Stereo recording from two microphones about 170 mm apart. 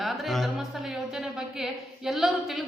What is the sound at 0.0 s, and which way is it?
A woman's voice, centre (ahead or behind).